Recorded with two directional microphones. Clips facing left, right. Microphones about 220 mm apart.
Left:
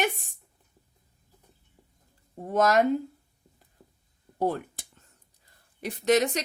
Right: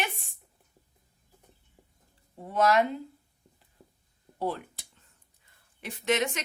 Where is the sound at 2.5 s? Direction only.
45° left (ahead or behind).